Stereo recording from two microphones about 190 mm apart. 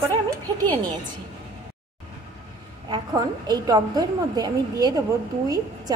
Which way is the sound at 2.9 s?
20° right (ahead or behind).